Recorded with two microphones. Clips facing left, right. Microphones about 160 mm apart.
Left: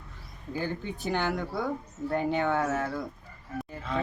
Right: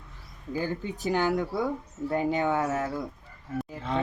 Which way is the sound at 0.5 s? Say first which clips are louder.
Right 2 dB; 5° right (ahead or behind).